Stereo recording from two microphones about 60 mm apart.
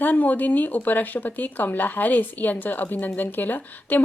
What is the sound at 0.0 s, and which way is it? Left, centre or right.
Speech, left.